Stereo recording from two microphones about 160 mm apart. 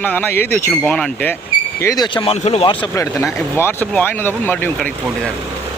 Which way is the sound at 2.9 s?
15° left (ahead or behind).